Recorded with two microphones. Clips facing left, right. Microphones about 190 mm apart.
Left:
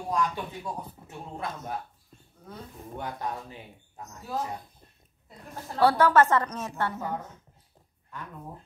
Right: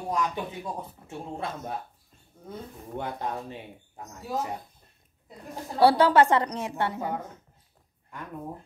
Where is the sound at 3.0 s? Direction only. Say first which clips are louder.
Right 2 dB; 25° right (ahead or behind).